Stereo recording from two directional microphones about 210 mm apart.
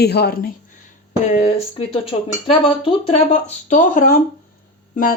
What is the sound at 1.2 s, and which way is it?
Speech, 30° left (ahead or behind).